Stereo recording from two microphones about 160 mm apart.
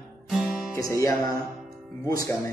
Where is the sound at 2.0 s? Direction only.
20° left (ahead or behind).